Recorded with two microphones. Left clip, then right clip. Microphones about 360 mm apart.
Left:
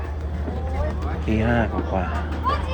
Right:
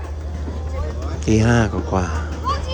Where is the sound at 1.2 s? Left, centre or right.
Left.